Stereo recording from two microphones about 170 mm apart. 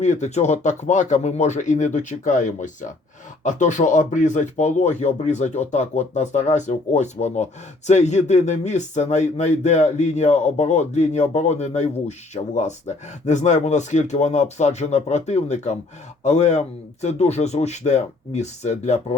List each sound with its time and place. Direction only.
0.0 s a man's voice: 45° left (ahead or behind)